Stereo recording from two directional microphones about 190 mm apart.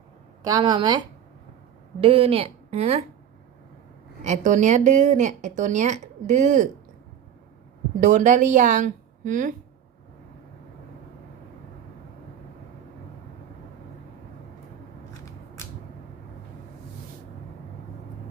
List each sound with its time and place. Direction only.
0.4 s a woman's voice: 20° right (ahead or behind)
4.2 s a woman's voice: 40° right (ahead or behind)
8.0 s a woman's voice: 40° right (ahead or behind)